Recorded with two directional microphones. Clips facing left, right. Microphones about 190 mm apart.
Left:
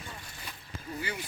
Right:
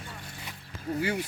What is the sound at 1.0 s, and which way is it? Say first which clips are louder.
Speech: right 8 dB; 65° right (ahead or behind).